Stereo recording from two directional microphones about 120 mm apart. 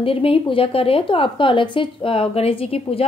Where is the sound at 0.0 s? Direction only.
50° left (ahead or behind).